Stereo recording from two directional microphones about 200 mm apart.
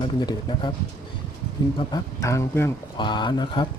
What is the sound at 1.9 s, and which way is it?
Speech, 15° left (ahead or behind).